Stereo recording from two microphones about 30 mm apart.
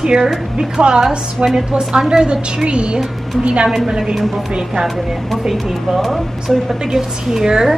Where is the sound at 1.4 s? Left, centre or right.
Right.